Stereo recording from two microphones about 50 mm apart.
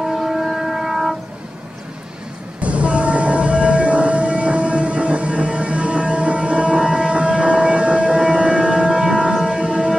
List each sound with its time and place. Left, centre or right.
0.1 s vehicle: centre
2.6 s train: right
8.3 s siren: right
9.6 s a sound: centre